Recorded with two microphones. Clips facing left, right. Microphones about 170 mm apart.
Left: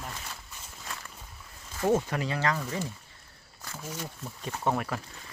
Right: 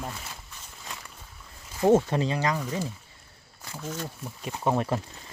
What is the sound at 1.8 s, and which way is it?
Speech, 25° right (ahead or behind).